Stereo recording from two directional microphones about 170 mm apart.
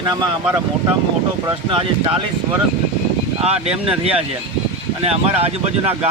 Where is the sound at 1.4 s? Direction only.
30° right (ahead or behind).